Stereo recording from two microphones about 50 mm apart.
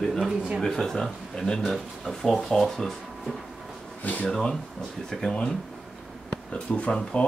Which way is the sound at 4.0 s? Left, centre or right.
Left.